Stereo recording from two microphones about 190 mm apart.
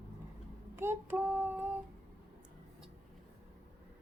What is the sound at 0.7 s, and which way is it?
Female singing, 15° right (ahead or behind).